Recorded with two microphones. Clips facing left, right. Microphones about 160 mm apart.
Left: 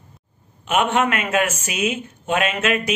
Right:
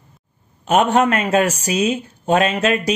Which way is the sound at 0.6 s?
40° right (ahead or behind).